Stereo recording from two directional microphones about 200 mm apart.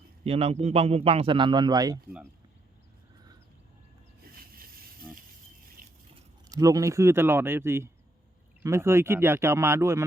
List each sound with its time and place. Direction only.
0.3 s a man's voice: 30° right (ahead or behind)
4.2 s a sound: 45° right (ahead or behind)
6.5 s speech: 15° right (ahead or behind)